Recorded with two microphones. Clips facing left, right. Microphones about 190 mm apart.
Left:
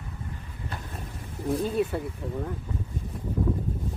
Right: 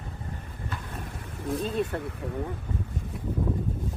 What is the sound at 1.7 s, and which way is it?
Speech, 5° left (ahead or behind).